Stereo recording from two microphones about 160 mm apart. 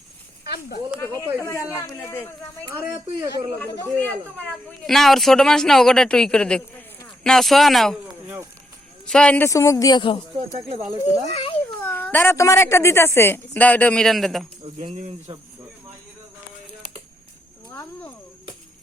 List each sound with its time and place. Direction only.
0.4 s speech: 80° left
1.4 s a woman's voice: 20° left (ahead or behind)
2.7 s speech: 15° right (ahead or behind)
3.6 s speech: 10° left (ahead or behind)
9.0 s speech: 5° left (ahead or behind)
9.5 s speech: 20° left (ahead or behind)
11.0 s a child's voice: 40° left (ahead or behind)
11.8 s a woman's voice: 10° left (ahead or behind)
14.6 s speech: 35° right (ahead or behind)